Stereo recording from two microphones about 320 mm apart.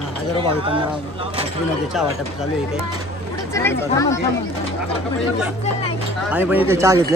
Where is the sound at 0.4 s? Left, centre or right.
Centre.